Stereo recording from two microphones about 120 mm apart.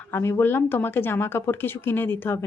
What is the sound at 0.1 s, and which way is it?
Speech, 20° left (ahead or behind).